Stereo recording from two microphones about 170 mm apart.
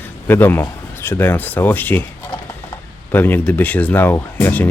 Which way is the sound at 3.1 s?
10° left (ahead or behind).